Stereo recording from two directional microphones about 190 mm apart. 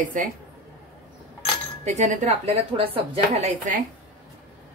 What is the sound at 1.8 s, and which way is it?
A woman's voice, 40° right (ahead or behind).